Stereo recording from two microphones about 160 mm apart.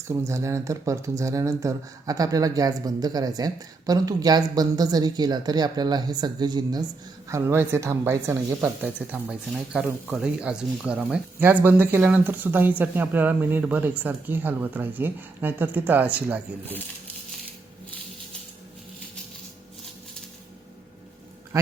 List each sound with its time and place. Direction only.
0.1 s speech: 20° right (ahead or behind)
21.5 s speech: 20° right (ahead or behind)